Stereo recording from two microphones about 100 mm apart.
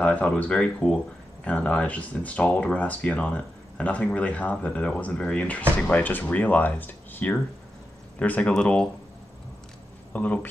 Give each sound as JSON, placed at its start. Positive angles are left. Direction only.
{"t": 0.0, "sound": "speech", "side_deg": 10}
{"t": 10.1, "sound": "speech", "side_deg": 15}